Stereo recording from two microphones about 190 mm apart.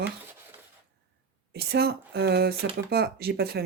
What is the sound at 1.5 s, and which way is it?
Speech, 55° right (ahead or behind).